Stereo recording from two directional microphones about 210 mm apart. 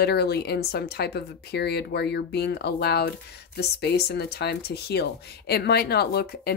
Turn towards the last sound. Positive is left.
turn(degrees=50)  # may be behind; listen again after turning